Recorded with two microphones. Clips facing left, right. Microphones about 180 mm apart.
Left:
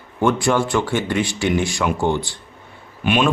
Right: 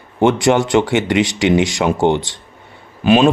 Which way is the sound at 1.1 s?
90° right.